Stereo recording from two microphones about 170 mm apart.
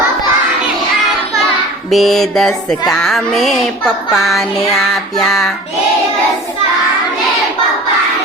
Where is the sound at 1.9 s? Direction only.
Centre (ahead or behind).